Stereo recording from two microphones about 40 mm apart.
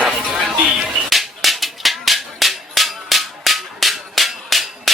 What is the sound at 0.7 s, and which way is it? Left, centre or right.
Music, centre.